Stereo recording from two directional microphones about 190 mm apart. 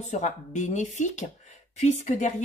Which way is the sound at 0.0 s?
40° left (ahead or behind).